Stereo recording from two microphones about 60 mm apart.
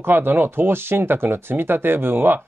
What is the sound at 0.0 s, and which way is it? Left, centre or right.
Speech, right.